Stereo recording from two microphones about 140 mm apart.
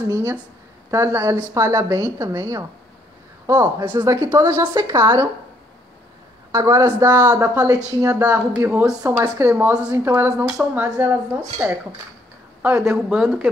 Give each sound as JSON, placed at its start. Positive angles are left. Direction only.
{"t": 0.0, "sound": "speech", "side_deg": -20}
{"t": 6.5, "sound": "speech", "side_deg": -25}